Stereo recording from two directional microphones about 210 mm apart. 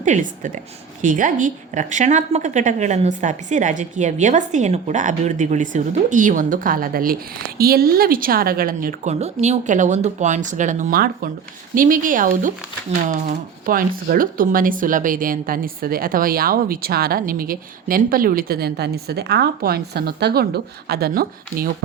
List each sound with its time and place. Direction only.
0.0 s a woman's voice: 35° right (ahead or behind)